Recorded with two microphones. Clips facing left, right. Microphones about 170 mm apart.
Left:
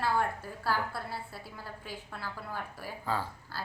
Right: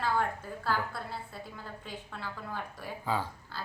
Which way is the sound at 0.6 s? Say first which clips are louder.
Left 1 dB; 10° left (ahead or behind).